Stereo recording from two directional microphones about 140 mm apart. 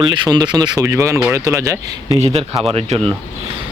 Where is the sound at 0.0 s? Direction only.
30° right (ahead or behind).